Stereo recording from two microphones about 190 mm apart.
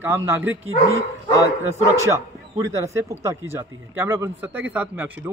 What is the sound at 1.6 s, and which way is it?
A man's voice, 15° right (ahead or behind).